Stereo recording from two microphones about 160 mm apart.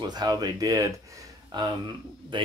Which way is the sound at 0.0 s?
25° right (ahead or behind).